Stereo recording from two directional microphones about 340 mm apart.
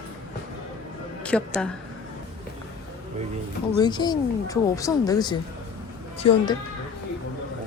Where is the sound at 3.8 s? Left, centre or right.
Centre.